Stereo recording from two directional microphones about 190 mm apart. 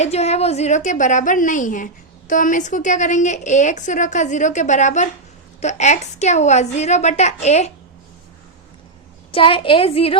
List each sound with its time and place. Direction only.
0.0 s a woman's voice: 35° left (ahead or behind)
9.3 s a woman's voice: 30° left (ahead or behind)